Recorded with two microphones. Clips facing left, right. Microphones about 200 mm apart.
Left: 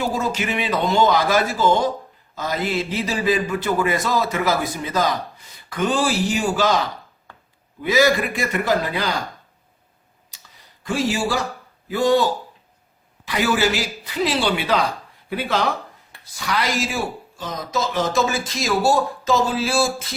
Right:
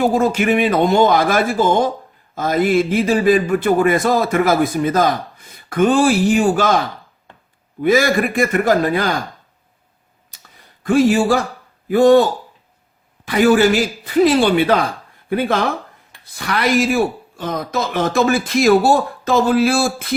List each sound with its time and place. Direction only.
0.0 s speech: 55° right (ahead or behind)
10.3 s a sound: 55° right (ahead or behind)
10.8 s speech: 55° right (ahead or behind)
13.2 s speech: 50° right (ahead or behind)